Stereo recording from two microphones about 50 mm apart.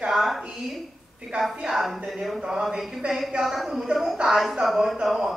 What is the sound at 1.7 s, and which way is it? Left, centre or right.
Speech, centre.